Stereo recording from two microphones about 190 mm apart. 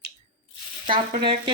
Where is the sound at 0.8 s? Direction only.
25° right (ahead or behind).